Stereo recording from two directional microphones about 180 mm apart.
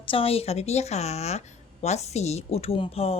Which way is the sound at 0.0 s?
30° left (ahead or behind).